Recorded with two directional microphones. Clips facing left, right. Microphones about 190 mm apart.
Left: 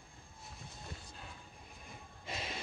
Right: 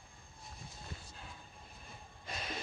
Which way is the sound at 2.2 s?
25° left (ahead or behind).